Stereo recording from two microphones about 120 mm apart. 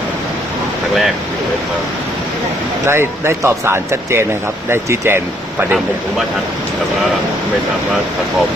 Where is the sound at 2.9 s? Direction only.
20° right (ahead or behind).